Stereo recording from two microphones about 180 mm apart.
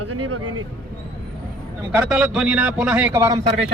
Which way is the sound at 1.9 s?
5° right (ahead or behind).